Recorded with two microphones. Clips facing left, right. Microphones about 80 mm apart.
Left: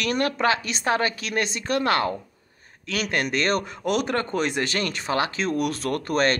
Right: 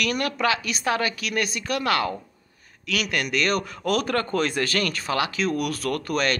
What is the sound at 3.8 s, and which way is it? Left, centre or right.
Speech, left.